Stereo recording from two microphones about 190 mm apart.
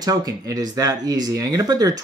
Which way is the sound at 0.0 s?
20° right (ahead or behind).